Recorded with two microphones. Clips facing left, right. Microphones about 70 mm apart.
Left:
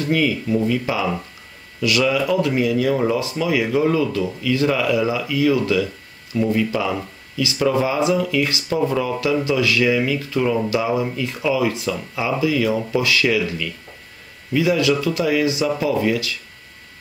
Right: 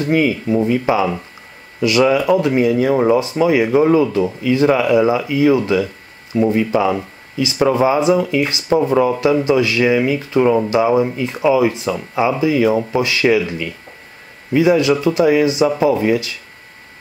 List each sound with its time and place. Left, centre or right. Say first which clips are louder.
0.0 s speech: right 4 dB; right